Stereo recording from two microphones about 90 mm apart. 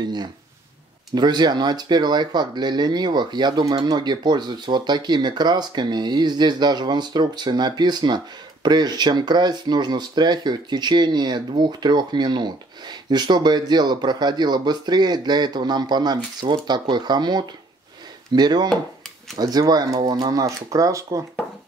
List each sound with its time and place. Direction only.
0.0 s speech: 55° right (ahead or behind)